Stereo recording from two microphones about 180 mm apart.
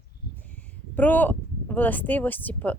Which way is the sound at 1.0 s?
10° left (ahead or behind).